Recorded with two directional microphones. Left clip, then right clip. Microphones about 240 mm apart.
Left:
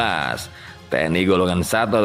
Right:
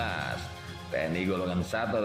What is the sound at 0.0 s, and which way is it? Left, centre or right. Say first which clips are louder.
Music: left 12 dB; left.